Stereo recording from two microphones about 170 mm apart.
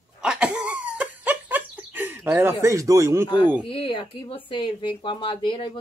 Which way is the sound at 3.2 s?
25° left (ahead or behind).